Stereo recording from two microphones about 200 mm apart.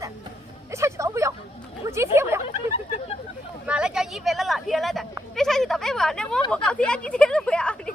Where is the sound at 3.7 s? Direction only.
5° right (ahead or behind).